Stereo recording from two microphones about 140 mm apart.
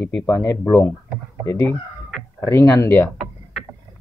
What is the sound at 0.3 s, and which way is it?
Speech, 25° left (ahead or behind).